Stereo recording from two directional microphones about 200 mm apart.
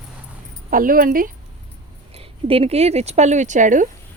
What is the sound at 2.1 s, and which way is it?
Speech, 30° right (ahead or behind).